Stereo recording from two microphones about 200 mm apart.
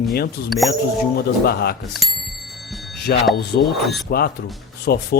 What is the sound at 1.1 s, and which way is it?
Speech, 50° left (ahead or behind).